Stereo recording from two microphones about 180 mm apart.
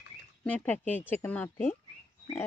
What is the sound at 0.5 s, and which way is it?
Speech, 10° left (ahead or behind).